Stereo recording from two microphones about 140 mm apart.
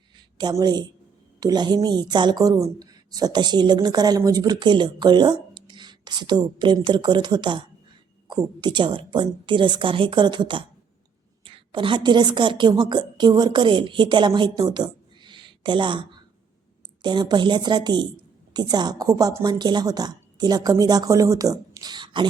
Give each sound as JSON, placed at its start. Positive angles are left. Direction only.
{"t": 0.3, "sound": "a woman's voice", "side_deg": -30}